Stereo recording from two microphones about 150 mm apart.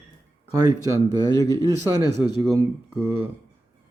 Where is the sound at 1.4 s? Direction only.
25° left (ahead or behind).